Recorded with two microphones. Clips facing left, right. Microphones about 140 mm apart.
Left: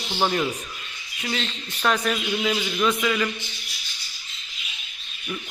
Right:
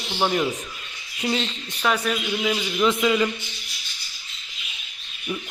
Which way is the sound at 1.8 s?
5° right (ahead or behind).